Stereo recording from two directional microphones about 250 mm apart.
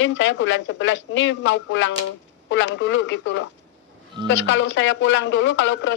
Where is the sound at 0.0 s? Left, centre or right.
Left.